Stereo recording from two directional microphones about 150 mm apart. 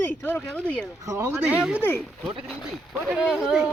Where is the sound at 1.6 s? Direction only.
5° right (ahead or behind).